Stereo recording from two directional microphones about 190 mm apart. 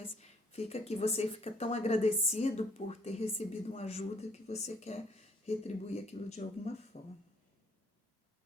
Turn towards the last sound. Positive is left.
turn(degrees=35)  # may be behind; listen again after turning